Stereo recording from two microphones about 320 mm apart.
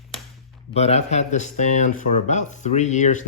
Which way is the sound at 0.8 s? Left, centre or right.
Centre.